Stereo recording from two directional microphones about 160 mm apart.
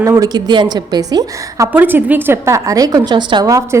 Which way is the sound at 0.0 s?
25° right (ahead or behind).